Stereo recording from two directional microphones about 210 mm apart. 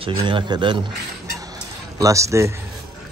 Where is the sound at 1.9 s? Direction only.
15° right (ahead or behind).